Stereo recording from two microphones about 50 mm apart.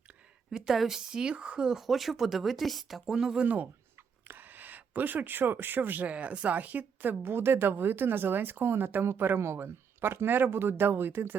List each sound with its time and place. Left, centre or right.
0.7 s a woman's voice: centre
1.8 s speech: centre
3.3 s speech: right